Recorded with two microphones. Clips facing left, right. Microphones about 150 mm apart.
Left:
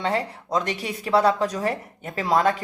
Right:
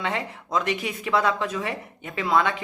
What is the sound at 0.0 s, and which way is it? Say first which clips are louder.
Speech: left 4 dB; 35° left (ahead or behind).